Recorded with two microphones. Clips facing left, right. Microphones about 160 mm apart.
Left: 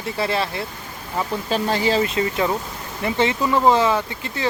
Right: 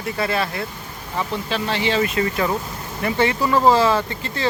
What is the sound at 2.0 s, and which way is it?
Speech, 25° left (ahead or behind).